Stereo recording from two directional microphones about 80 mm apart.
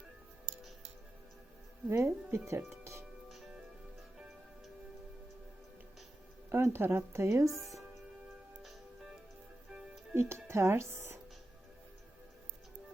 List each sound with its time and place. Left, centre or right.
1.9 s speech: right
3.2 s music: centre
6.5 s speech: right
9.7 s music: centre
10.2 s speech: right